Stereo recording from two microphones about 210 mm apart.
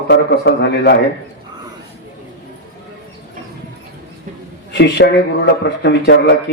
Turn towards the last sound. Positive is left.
turn(degrees=55)  # may be behind; listen again after turning